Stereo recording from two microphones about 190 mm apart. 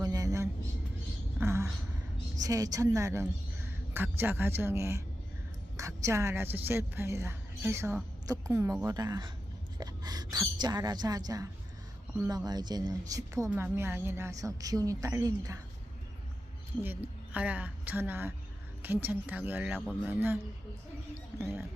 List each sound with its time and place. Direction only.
0.0 s a sound: 20° right (ahead or behind)
2.4 s a woman's voice: 20° right (ahead or behind)
9.7 s a sound: 20° right (ahead or behind)
12.5 s a woman's voice: 20° right (ahead or behind)
16.8 s a woman's voice: 10° right (ahead or behind)
19.8 s speech: 5° left (ahead or behind)
20.1 s a woman's voice: 10° right (ahead or behind)